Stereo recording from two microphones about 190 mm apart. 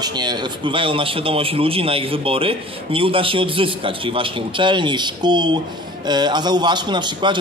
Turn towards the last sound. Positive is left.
turn(degrees=-25)  # may be behind; listen again after turning